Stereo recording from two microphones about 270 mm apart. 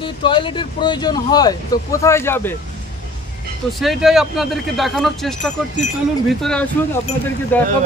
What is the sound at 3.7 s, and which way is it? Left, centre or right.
Speech, centre.